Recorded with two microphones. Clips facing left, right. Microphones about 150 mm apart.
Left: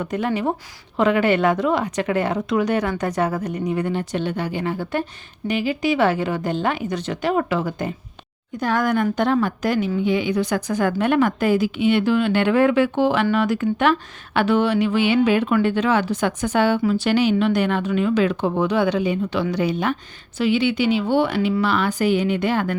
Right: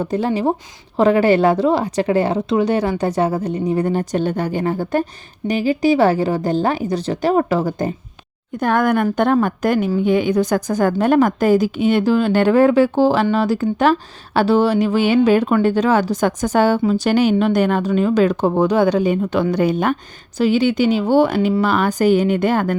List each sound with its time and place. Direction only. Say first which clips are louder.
0.0 s a woman's voice: right 4 dB; 30° right (ahead or behind)
8.5 s a woman's voice: right 4 dB; 55° right (ahead or behind)